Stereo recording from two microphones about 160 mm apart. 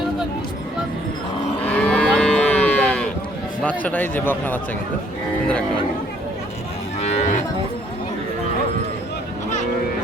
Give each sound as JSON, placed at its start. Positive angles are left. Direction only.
{"t": 1.6, "sound": "moo", "side_deg": 10}
{"t": 3.6, "sound": "speech", "side_deg": 10}
{"t": 7.0, "sound": "cattle", "side_deg": 45}